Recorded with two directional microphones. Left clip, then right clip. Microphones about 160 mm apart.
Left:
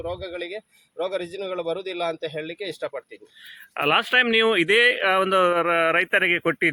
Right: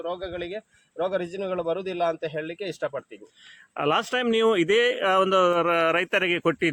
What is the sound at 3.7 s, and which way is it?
Speech, centre (ahead or behind).